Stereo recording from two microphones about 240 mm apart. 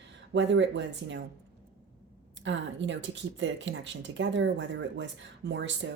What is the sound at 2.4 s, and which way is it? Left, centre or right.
A woman's voice, right.